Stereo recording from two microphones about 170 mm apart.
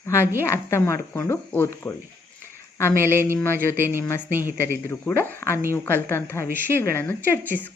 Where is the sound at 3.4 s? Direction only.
15° left (ahead or behind).